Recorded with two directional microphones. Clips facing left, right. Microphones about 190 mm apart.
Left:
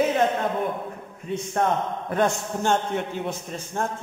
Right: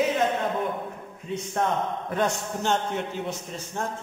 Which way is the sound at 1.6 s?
55° left (ahead or behind).